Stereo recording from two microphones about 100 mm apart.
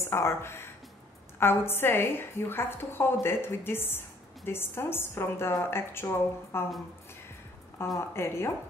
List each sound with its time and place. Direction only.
0.0 s a woman's voice: 25° left (ahead or behind)
8.0 s a woman's voice: 25° left (ahead or behind)